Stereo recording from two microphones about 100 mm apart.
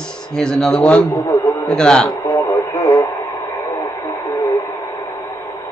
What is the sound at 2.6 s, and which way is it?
Radio, 35° left (ahead or behind).